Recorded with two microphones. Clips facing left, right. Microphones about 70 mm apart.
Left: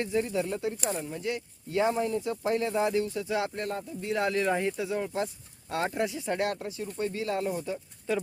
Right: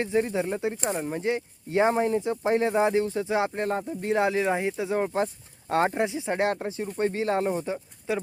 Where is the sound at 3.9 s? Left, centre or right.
Right.